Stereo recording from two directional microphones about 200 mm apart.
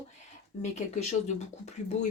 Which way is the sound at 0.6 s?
35° left (ahead or behind).